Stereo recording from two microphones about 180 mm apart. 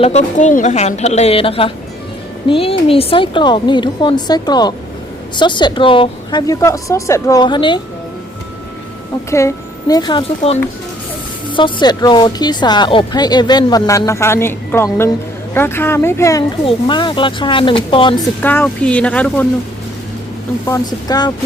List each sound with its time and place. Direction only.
0.0 s a woman's voice: 40° left (ahead or behind)
9.9 s speech: 25° left (ahead or behind)
16.6 s speech: 25° left (ahead or behind)
18.4 s speech: 10° left (ahead or behind)
20.7 s speech: 20° left (ahead or behind)